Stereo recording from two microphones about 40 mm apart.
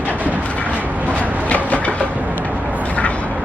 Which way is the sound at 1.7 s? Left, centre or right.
Left.